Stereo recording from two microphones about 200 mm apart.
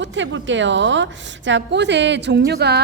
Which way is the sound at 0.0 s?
65° right (ahead or behind).